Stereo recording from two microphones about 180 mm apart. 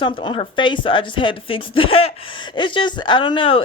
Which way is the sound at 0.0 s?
25° left (ahead or behind).